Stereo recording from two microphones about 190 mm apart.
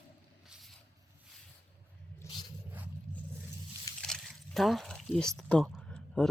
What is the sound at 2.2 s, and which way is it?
Zipper, 15° left (ahead or behind).